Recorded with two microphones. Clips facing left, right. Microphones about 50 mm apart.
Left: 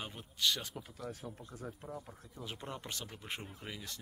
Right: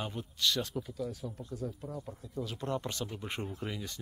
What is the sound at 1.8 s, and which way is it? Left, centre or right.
Speech, centre.